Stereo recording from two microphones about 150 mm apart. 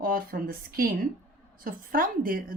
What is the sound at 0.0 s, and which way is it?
A woman's voice, 75° right (ahead or behind).